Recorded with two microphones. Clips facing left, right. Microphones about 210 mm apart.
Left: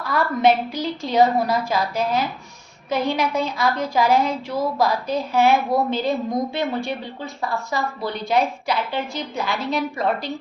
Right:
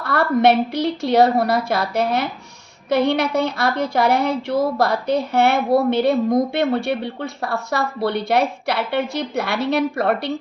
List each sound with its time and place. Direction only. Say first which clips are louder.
0.0 s a woman's voice: right 3 dB; 70° right (ahead or behind)